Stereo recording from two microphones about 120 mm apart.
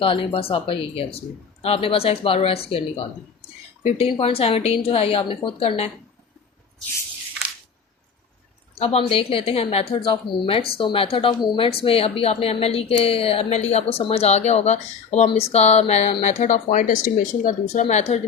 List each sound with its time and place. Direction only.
0.0 s a woman's voice: 50° left (ahead or behind)
8.8 s a woman's voice: 55° left (ahead or behind)
15.3 s a woman's voice: 60° left (ahead or behind)
16.2 s speech: 85° left